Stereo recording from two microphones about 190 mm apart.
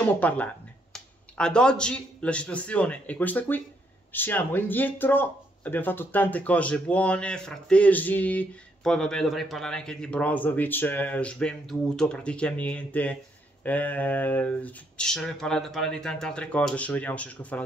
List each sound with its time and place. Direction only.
0.0 s speech: 10° left (ahead or behind)